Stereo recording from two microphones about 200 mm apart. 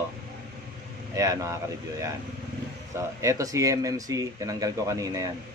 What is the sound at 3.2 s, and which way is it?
Speech, 15° right (ahead or behind).